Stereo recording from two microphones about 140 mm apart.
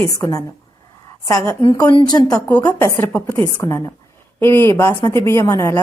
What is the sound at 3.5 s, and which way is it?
A woman's voice, 25° left (ahead or behind).